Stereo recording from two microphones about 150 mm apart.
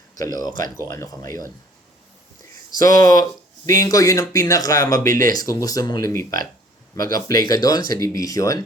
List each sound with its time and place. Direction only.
0.2 s speech: 25° left (ahead or behind)
2.7 s speech: 25° left (ahead or behind)
4.9 s speech: 65° right (ahead or behind)
5.3 s speech: 25° left (ahead or behind)